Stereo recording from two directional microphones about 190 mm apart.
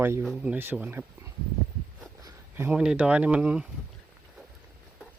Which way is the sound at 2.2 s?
15° right (ahead or behind).